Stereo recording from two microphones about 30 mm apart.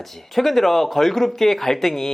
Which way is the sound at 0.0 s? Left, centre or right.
Centre.